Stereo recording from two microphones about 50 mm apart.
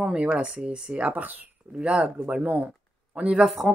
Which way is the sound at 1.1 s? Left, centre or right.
Right.